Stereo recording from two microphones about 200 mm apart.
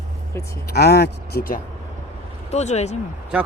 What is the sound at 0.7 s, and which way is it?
Speech, 55° left (ahead or behind).